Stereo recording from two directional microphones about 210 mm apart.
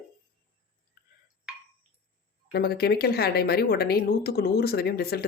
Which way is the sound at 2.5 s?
50° left (ahead or behind).